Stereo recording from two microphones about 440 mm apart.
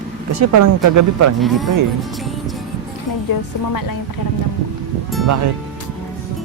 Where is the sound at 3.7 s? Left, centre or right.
Left.